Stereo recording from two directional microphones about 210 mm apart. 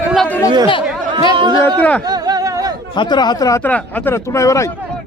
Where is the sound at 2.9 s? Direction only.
20° left (ahead or behind).